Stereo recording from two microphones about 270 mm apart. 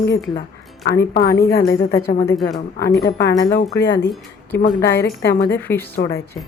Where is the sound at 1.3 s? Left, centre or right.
Left.